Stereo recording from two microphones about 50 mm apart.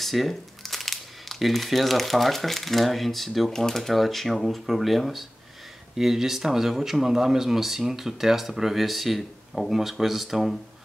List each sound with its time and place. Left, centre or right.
0.0 s speech: centre